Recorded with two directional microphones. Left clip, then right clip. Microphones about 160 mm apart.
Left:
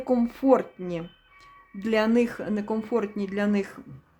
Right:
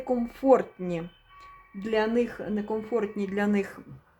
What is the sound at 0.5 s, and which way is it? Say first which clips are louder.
Speech: even; 5° left (ahead or behind).